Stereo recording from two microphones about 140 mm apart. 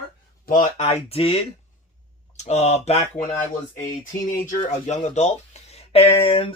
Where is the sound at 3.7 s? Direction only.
25° left (ahead or behind).